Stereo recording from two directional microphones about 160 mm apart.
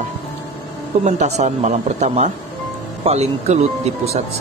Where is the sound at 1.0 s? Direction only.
45° right (ahead or behind).